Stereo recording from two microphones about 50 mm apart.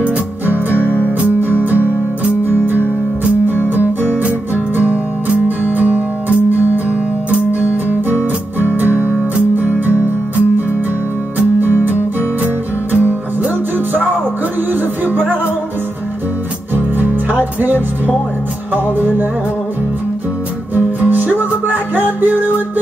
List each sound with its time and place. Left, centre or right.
0.5 s music: right
4.7 s music: right
8.5 s music: right
16.7 s music: right
18.7 s music: right
20.7 s music: right